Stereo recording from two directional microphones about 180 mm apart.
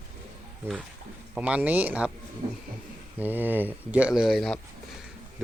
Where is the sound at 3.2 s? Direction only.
10° right (ahead or behind).